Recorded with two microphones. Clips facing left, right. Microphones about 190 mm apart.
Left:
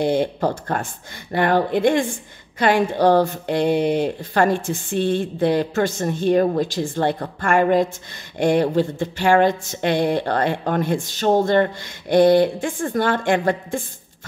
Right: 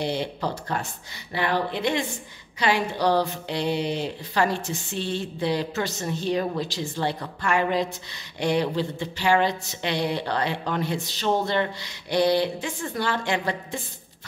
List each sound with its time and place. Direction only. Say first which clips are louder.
0.0 s speech: left 8 dB; 50° left (ahead or behind)